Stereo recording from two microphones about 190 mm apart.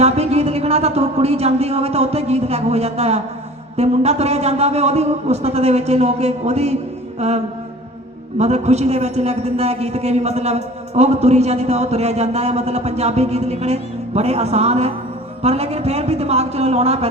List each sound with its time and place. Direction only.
0.0 s a man's voice: 35° right (ahead or behind)